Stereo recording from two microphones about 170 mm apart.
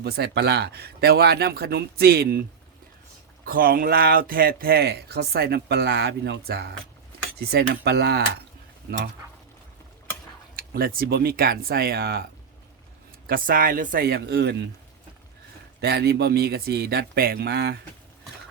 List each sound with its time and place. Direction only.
0.0 s speech: 70° right (ahead or behind)
3.4 s speech: 60° right (ahead or behind); by 8.2 s 75° right (ahead or behind)
10.5 s speech: 60° right (ahead or behind)
13.2 s speech: 60° right (ahead or behind); by 14.5 s 75° right (ahead or behind)
15.8 s speech: 70° right (ahead or behind)